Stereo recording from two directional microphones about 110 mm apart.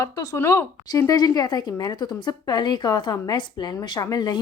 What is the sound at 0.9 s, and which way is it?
A woman's voice, 35° left (ahead or behind).